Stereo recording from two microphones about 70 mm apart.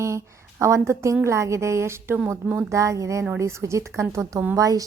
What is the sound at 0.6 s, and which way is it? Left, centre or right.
A woman's voice, right.